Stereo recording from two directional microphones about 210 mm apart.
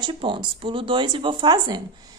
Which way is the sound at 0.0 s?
25° right (ahead or behind).